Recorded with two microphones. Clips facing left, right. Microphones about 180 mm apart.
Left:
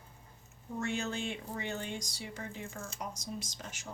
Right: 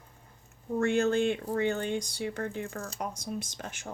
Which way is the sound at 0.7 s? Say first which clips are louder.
Right 10 dB; 55° right (ahead or behind).